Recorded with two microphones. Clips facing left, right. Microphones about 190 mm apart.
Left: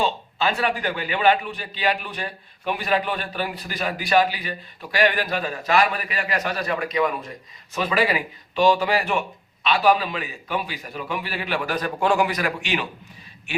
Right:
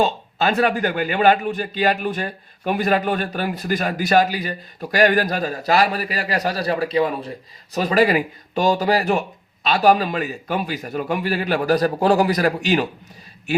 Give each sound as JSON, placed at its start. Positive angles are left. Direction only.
{"t": 0.0, "sound": "a man's voice", "side_deg": -45}